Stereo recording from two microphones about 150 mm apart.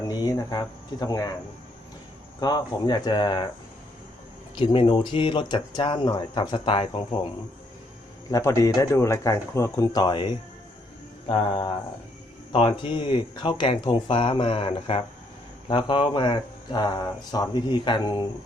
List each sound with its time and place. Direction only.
0.2 s speech: 25° left (ahead or behind)
2.4 s speech: 25° left (ahead or behind)
4.5 s speech: 35° left (ahead or behind)
8.3 s speech: 20° left (ahead or behind)